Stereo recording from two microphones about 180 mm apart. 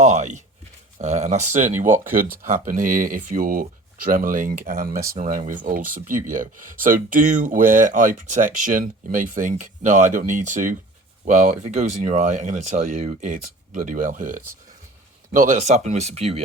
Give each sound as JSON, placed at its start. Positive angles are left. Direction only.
{"t": 0.0, "sound": "a sound", "side_deg": -40}
{"t": 0.9, "sound": "speech", "side_deg": -40}
{"t": 1.8, "sound": "speech", "side_deg": -50}